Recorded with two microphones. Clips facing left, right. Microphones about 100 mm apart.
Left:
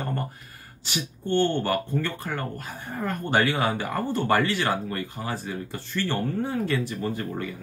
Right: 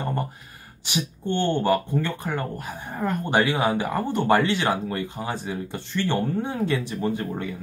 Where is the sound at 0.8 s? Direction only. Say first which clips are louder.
Right 2 dB; 15° right (ahead or behind).